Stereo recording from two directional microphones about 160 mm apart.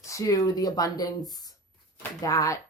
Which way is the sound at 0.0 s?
20° left (ahead or behind).